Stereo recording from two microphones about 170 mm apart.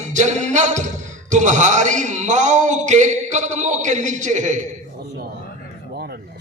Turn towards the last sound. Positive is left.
turn(degrees=-65)  # may be behind; listen again after turning